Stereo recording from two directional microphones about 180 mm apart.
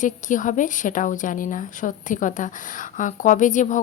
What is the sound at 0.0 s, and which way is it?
A woman's voice, 45° left (ahead or behind).